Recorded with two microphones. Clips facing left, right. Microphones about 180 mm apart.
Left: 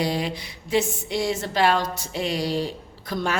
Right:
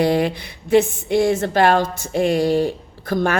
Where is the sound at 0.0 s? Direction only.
60° right (ahead or behind).